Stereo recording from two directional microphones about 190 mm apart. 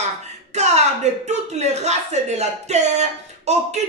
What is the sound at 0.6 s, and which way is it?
Speech, 35° right (ahead or behind).